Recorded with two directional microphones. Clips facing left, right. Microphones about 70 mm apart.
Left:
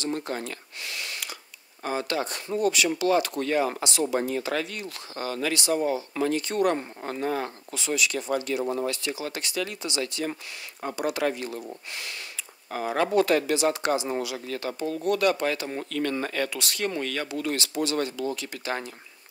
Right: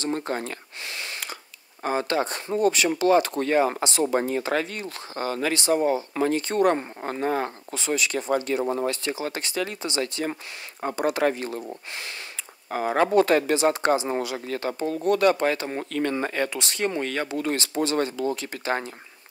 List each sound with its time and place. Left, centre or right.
0.0 s speech: right